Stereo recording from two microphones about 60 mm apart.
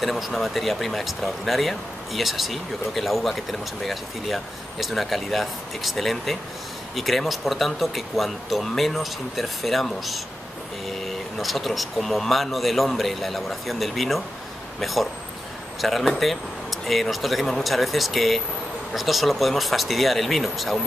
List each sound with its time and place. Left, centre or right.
0.0 s speech: centre